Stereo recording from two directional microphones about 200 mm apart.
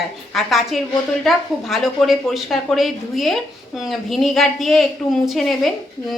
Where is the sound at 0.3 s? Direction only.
Centre (ahead or behind).